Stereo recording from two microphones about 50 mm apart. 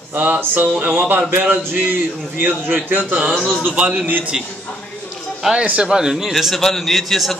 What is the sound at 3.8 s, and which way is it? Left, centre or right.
Speech, centre.